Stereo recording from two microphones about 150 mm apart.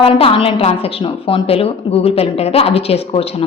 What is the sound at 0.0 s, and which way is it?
A woman's voice, 40° left (ahead or behind).